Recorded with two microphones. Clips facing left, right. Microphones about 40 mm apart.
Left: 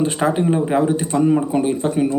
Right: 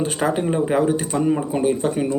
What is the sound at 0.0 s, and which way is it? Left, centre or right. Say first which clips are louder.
Speech: left 3 dB; centre.